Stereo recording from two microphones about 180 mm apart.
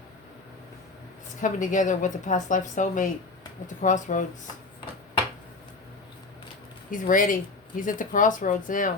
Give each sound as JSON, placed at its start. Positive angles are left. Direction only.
{"t": 1.4, "sound": "a woman's voice", "side_deg": 45}
{"t": 6.9, "sound": "a woman's voice", "side_deg": 45}